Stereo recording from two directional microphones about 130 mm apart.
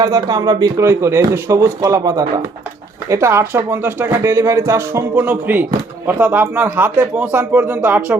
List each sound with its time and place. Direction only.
0.0 s speech: 30° right (ahead or behind); by 8.1 s 15° right (ahead or behind)